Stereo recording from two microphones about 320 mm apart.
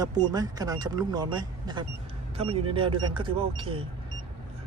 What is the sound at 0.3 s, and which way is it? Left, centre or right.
Speech, centre.